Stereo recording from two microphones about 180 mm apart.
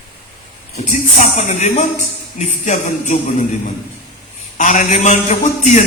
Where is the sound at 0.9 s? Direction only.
40° left (ahead or behind).